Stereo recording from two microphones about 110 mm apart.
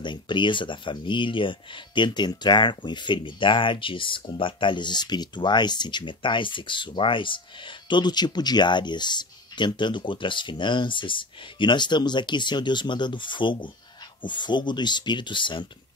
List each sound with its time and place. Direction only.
0.0 s speech: 45° left (ahead or behind)